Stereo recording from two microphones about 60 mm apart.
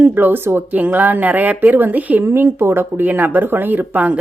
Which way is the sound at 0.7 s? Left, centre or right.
Right.